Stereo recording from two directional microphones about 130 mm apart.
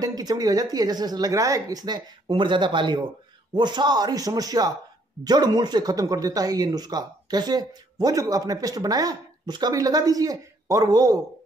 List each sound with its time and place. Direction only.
0.0 s speech: 30° right (ahead or behind)